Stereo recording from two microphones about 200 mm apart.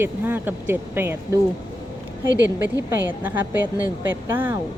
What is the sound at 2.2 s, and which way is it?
Speech, 60° right (ahead or behind).